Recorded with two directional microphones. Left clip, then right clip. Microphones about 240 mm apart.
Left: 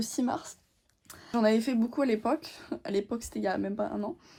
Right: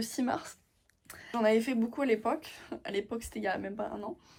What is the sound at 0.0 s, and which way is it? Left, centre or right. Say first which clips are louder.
Speech: left 1 dB; centre.